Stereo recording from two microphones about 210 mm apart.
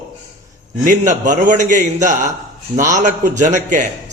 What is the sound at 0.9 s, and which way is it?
Speech, 35° right (ahead or behind).